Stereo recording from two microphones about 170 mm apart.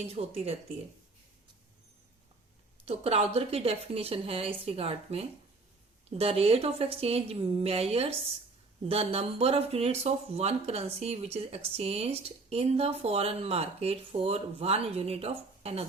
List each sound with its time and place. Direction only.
0.1 s speech: 35° right (ahead or behind)
2.8 s speech: 35° right (ahead or behind)